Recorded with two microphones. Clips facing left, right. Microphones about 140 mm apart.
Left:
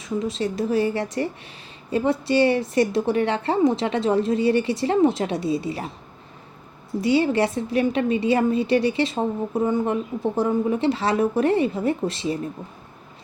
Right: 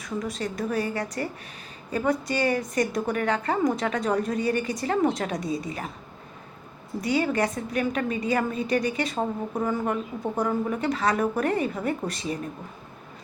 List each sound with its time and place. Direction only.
0.0 s a woman's voice: 25° left (ahead or behind)
7.0 s a woman's voice: 30° left (ahead or behind)